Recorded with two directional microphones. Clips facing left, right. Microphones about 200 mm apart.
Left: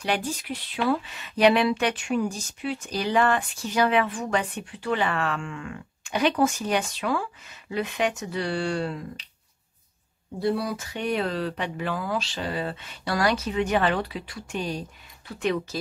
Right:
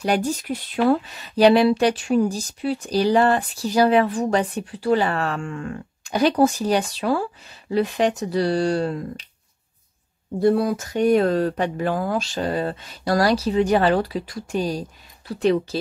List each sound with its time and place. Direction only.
0.0 s speech: 45° right (ahead or behind)
10.4 s speech: 50° right (ahead or behind); by 15.8 s 35° right (ahead or behind)